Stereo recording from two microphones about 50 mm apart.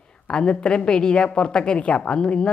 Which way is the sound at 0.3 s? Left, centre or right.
Centre.